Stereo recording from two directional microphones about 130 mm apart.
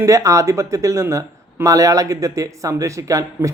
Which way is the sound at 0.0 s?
25° right (ahead or behind).